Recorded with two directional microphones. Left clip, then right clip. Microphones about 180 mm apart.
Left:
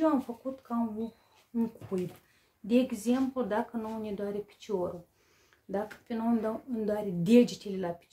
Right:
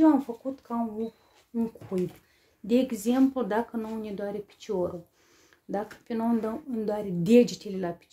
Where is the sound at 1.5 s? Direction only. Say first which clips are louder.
Right 3 dB; 25° right (ahead or behind).